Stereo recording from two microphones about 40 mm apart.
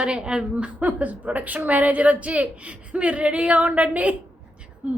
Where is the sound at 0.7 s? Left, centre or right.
Right.